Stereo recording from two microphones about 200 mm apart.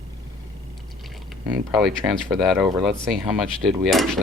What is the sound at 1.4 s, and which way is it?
Speech, 5° right (ahead or behind).